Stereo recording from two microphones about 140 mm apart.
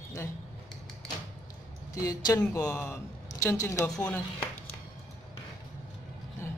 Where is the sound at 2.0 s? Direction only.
25° left (ahead or behind).